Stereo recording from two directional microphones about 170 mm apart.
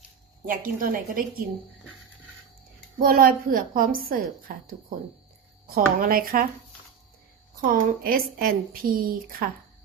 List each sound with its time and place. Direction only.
0.4 s a woman's voice: 55° right (ahead or behind)
3.0 s a woman's voice: 60° right (ahead or behind)
5.7 s a woman's voice: 60° right (ahead or behind)
7.6 s a woman's voice: 55° right (ahead or behind)